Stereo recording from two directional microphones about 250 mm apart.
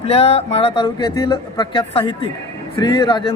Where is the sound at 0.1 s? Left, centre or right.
Left.